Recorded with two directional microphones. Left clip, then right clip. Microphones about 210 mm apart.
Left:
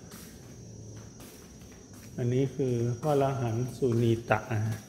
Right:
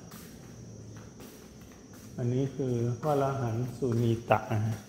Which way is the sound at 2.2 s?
15° left (ahead or behind).